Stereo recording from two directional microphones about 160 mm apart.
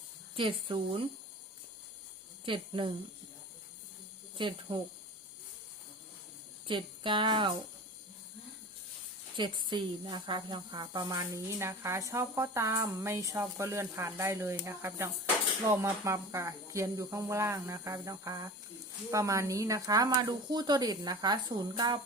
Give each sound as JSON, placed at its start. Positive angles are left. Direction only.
{"t": 0.3, "sound": "speech", "side_deg": -35}
{"t": 2.4, "sound": "speech", "side_deg": -30}
{"t": 4.4, "sound": "speech", "side_deg": -30}
{"t": 6.7, "sound": "speech", "side_deg": -30}
{"t": 9.3, "sound": "speech", "side_deg": -30}